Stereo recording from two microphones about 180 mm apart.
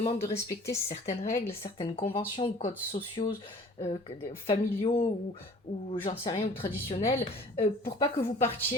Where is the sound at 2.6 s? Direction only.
40° left (ahead or behind).